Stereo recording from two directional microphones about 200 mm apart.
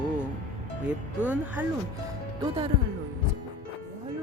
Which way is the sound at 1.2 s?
10° right (ahead or behind).